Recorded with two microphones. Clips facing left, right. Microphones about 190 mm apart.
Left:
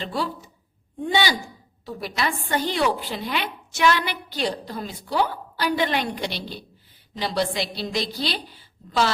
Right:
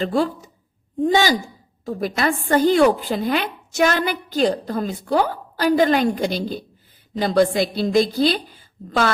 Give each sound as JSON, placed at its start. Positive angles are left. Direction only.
{"t": 0.0, "sound": "a woman's voice", "side_deg": -45}